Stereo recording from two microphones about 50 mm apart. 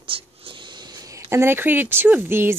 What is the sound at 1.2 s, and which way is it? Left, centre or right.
Speech, right.